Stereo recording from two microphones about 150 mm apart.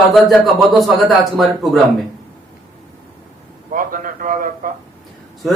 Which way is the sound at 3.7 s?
65° right (ahead or behind).